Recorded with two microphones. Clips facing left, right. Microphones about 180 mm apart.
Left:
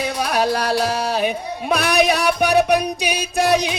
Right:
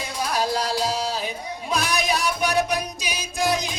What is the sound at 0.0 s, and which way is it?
Music, 70° left (ahead or behind).